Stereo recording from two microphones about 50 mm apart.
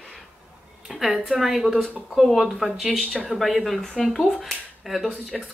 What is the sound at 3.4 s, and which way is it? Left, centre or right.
Speech, centre.